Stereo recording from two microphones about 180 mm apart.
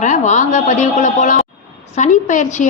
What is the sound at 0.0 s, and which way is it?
A woman's voice, 40° left (ahead or behind).